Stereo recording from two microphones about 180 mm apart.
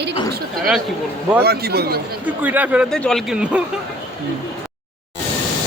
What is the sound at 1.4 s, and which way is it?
Speech, 60° right (ahead or behind).